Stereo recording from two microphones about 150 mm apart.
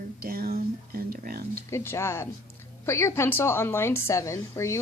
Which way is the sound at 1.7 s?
15° left (ahead or behind).